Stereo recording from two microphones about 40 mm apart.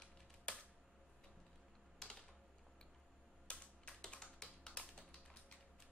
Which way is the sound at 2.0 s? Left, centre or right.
Centre.